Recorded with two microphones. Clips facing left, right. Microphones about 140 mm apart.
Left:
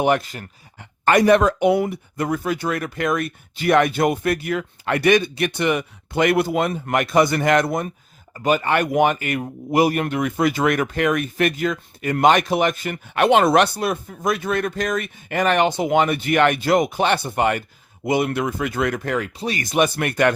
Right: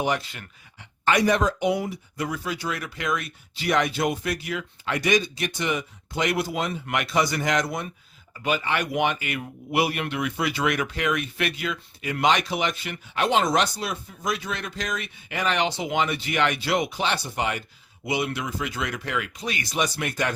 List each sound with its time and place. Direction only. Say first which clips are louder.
0.0 s a man's voice: left 7 dB; 50° left (ahead or behind)
19.6 s speech: left 8 dB; 55° left (ahead or behind)